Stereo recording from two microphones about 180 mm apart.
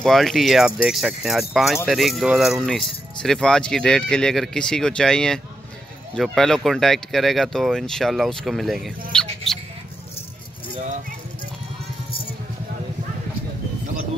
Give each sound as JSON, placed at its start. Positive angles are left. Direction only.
{"t": 0.0, "sound": "speech", "side_deg": 0}
{"t": 10.7, "sound": "keys jangling", "side_deg": -40}